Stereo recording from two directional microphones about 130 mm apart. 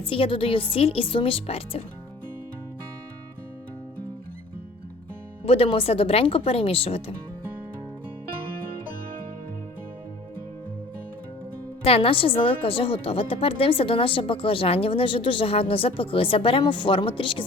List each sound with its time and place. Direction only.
0.0 s a woman's voice: 45° left (ahead or behind)
5.5 s a woman's voice: 45° left (ahead or behind)
11.8 s a woman's voice: 45° left (ahead or behind)